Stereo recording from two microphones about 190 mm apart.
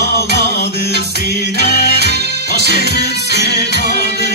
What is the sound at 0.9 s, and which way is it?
Music, 60° right (ahead or behind).